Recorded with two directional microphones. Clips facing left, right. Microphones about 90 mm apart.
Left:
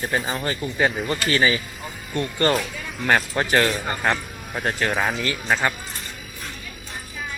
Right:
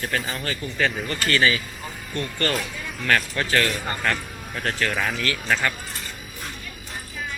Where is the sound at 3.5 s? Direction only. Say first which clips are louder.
Left 3 dB; 25° left (ahead or behind).